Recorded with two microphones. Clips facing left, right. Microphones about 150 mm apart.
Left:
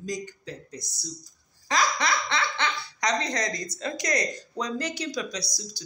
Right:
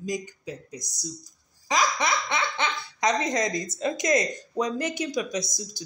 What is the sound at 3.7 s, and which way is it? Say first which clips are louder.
Speech: right 6 dB; 20° right (ahead or behind).